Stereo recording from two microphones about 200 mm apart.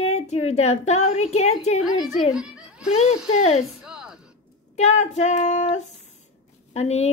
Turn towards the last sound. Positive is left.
turn(degrees=35)  # may be behind; listen again after turning